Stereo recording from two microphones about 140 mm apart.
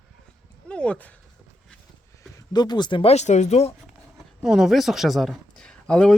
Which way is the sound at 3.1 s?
55° left (ahead or behind).